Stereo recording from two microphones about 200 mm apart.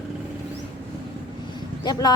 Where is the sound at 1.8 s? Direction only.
20° left (ahead or behind).